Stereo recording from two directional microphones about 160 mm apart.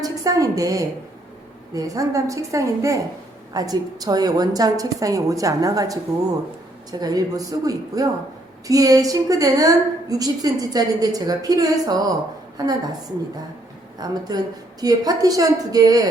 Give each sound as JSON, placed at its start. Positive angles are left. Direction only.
{"t": 0.0, "sound": "a woman's voice", "side_deg": -20}
{"t": 7.0, "sound": "a woman's voice", "side_deg": -25}